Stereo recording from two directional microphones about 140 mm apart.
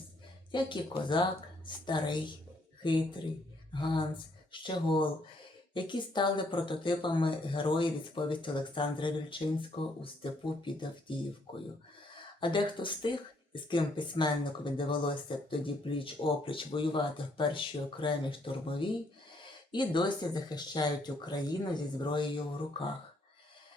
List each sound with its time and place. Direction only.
0.5 s speech: 35° left (ahead or behind)